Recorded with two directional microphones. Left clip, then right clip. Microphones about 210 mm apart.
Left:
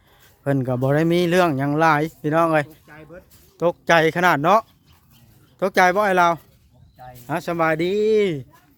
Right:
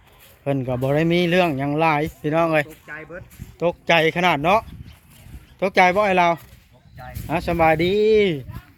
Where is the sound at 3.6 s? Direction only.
30° left (ahead or behind); by 8.5 s 15° left (ahead or behind).